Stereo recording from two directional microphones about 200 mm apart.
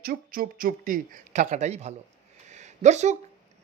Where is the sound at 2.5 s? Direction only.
35° right (ahead or behind).